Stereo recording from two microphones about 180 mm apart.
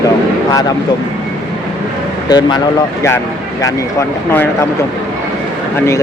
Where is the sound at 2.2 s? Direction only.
20° left (ahead or behind).